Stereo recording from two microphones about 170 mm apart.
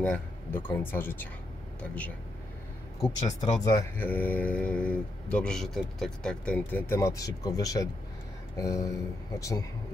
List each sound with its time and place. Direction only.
0.0 s speech: 10° left (ahead or behind)
3.3 s speech: 20° left (ahead or behind)
3.9 s speech: 10° left (ahead or behind)